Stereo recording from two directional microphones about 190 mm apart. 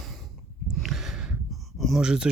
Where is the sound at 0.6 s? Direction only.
Centre (ahead or behind).